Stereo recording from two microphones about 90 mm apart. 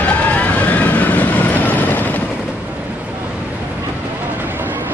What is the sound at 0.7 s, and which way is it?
Vehicle, 20° left (ahead or behind).